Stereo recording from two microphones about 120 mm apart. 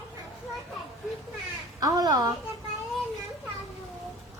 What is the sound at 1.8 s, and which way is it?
Speech, 30° right (ahead or behind).